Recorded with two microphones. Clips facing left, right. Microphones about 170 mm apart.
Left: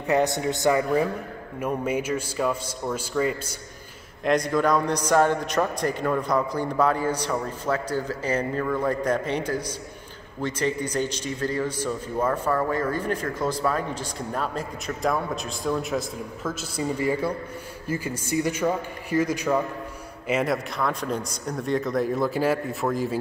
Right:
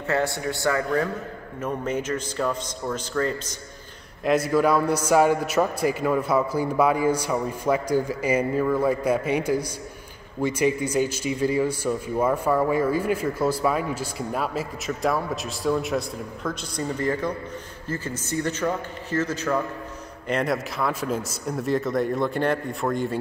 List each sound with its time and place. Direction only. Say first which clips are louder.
0.0 s a man's voice: left 2 dB; 15° left (ahead or behind)
4.2 s a man's voice: right 2 dB; 5° right (ahead or behind); by 19.6 s 15° left (ahead or behind)
20.2 s speech: even; centre (ahead or behind)